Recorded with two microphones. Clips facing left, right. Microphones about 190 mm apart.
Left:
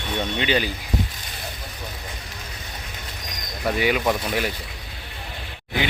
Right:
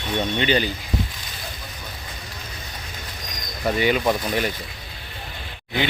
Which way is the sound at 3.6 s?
Centre (ahead or behind).